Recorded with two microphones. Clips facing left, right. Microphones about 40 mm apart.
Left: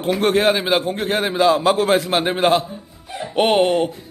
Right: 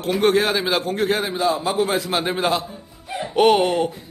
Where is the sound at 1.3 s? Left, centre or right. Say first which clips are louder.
Left 6 dB; left.